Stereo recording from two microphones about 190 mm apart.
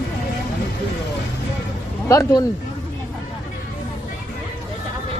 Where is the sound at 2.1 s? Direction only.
15° left (ahead or behind).